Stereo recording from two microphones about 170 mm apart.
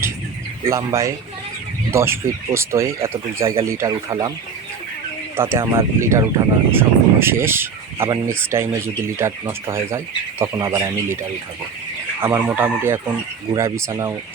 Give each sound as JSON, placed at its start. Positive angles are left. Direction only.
{"t": 0.6, "sound": "speech", "side_deg": -15}
{"t": 5.4, "sound": "speech", "side_deg": -15}
{"t": 12.2, "sound": "speech", "side_deg": -15}